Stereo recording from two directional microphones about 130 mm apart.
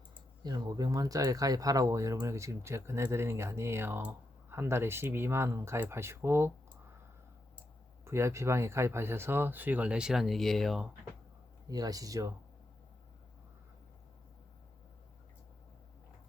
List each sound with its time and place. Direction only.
0.4 s speech: 30° right (ahead or behind)
8.0 s speech: 20° right (ahead or behind); by 10.8 s centre (ahead or behind)
11.7 s speech: 30° right (ahead or behind)